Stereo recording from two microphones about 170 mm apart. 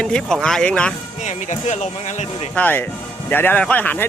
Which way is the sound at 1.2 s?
45° left (ahead or behind).